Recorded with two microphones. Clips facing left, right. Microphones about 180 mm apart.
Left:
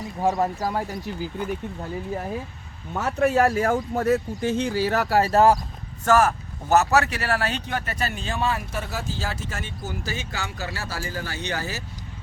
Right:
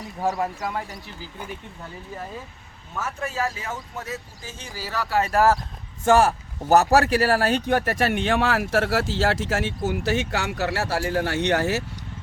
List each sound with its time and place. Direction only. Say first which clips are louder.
0.3 s speech: left 3 dB; 35° left (ahead or behind)
3.0 s speech: left 8 dB; 65° left (ahead or behind); by 5.3 s 40° left (ahead or behind)
5.3 s speech: left 2 dB; 20° left (ahead or behind)
6.1 s speech: right 1 dB; 30° right (ahead or behind); by 11.8 s 70° right (ahead or behind)